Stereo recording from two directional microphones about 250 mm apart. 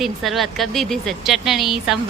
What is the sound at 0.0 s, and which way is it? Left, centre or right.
A woman's voice, centre.